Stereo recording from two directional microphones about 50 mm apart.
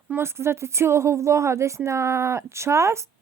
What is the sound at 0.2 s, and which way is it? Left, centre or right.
A woman's voice, right.